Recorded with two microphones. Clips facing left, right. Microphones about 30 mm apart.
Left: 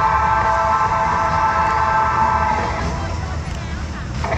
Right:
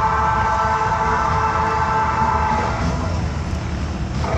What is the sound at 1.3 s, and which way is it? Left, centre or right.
Music, centre.